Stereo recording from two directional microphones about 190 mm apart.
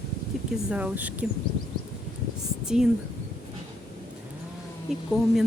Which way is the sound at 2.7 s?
5° right (ahead or behind).